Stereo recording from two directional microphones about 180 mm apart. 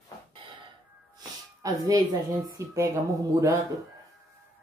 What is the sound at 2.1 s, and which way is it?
Speech, 20° right (ahead or behind).